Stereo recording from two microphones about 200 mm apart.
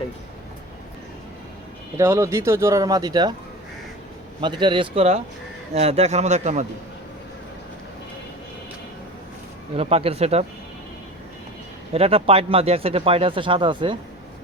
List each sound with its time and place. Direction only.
2.0 s speech: 15° right (ahead or behind)
4.4 s speech: 20° right (ahead or behind)
9.7 s speech: 30° right (ahead or behind)
11.9 s speech: 30° right (ahead or behind)